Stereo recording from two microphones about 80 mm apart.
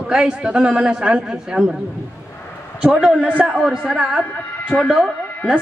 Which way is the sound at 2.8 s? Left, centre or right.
Centre.